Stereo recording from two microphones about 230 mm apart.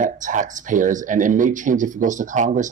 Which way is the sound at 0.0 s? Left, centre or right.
Right.